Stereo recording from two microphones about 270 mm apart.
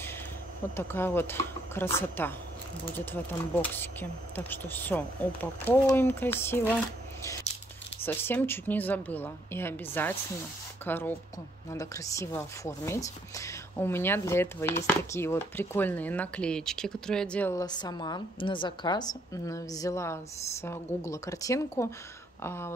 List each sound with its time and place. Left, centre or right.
0.7 s speech: centre
8.0 s speech: centre